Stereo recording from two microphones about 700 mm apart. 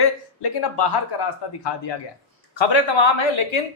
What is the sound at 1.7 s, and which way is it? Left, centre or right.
Speech, left.